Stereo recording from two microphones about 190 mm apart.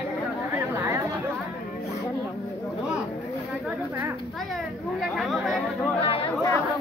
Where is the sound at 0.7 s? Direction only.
15° right (ahead or behind).